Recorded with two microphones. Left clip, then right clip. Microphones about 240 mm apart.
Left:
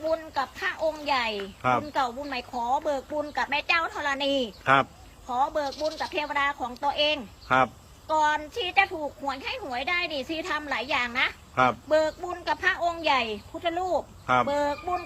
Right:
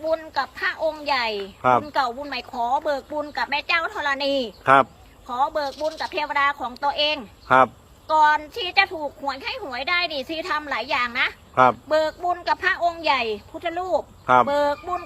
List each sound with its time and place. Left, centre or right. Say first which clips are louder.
0.1 s a woman's voice: right 6 dB; centre
4.6 s speech: right 6 dB; centre
5.3 s a woman's voice: right 3 dB; centre
7.4 s speech: right 7 dB; centre
8.0 s a woman's voice: right 7 dB; centre
11.5 s speech: right 7 dB; centre
11.9 s a woman's voice: right 3 dB; centre